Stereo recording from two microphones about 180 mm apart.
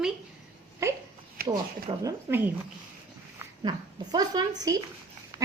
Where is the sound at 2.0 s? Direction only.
15° right (ahead or behind).